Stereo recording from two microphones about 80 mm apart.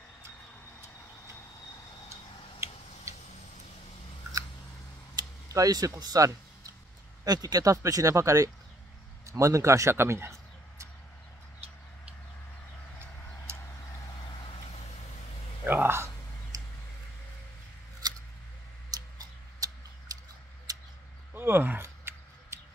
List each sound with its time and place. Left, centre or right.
5.5 s speech: right
7.7 s a man's voice: right
14.2 s vehicle: left
15.6 s whispering: right
16.5 s tick-tock: right
18.0 s scissors: right
18.9 s tick-tock: right
20.7 s a sound: right
21.3 s a sound: right